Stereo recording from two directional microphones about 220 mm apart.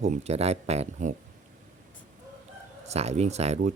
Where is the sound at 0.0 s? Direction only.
30° right (ahead or behind).